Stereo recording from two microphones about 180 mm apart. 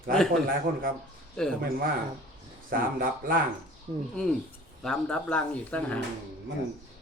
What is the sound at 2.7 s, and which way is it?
Speech, 55° right (ahead or behind).